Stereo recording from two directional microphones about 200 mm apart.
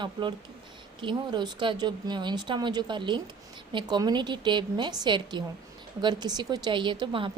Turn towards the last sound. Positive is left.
turn(degrees=-25)  # may be behind; listen again after turning